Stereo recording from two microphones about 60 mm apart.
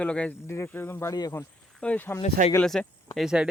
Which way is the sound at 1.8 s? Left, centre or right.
Centre.